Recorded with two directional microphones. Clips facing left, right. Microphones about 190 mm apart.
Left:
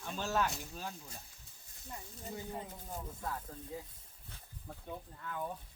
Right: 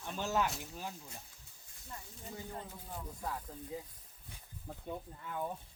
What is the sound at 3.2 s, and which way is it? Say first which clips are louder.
Speech: right 1 dB; 10° right (ahead or behind).